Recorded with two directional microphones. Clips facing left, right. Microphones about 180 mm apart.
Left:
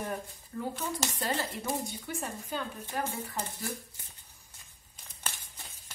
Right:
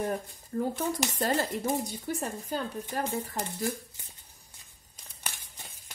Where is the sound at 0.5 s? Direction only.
45° right (ahead or behind).